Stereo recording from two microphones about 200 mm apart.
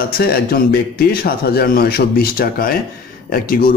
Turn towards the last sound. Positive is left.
turn(degrees=45)  # may be behind; listen again after turning